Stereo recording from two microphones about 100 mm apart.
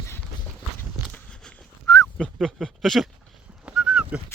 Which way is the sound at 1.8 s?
35° left (ahead or behind).